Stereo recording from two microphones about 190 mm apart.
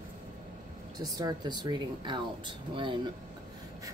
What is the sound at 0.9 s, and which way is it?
Speech, 20° right (ahead or behind).